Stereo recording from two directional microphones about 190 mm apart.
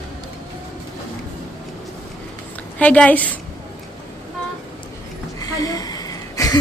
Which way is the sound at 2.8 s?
10° left (ahead or behind).